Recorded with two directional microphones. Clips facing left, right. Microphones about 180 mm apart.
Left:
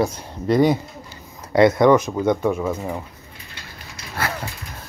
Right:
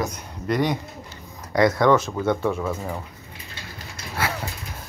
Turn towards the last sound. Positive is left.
turn(degrees=-5)  # may be behind; listen again after turning